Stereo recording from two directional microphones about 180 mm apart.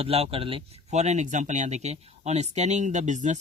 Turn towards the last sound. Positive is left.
turn(degrees=-45)  # may be behind; listen again after turning